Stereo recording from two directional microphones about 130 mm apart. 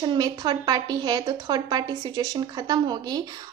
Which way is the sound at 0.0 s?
30° right (ahead or behind).